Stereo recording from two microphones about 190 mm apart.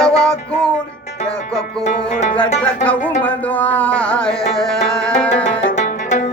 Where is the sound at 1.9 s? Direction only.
40° left (ahead or behind).